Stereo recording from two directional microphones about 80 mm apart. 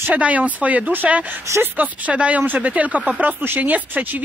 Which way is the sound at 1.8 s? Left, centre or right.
Centre.